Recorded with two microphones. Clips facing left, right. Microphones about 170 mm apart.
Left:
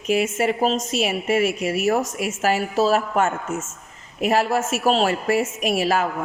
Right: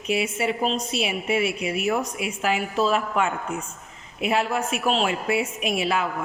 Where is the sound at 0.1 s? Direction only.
45° left (ahead or behind).